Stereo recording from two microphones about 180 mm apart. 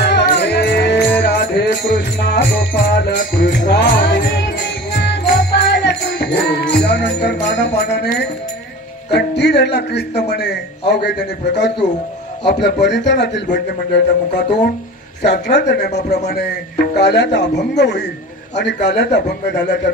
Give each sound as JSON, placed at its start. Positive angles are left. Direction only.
{"t": 0.0, "sound": "music", "side_deg": 70}
{"t": 7.9, "sound": "a man's voice", "side_deg": 70}
{"t": 15.2, "sound": "a man's voice", "side_deg": 70}